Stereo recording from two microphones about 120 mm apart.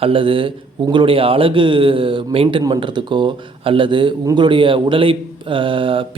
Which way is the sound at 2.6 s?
40° right (ahead or behind).